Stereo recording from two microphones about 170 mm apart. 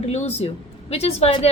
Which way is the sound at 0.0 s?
40° left (ahead or behind).